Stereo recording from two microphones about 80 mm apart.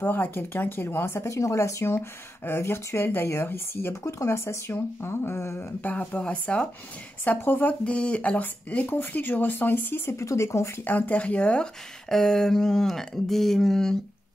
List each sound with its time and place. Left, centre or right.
0.0 s speech: left
5.8 s speech: centre; by 10.9 s left
10.9 s speech: centre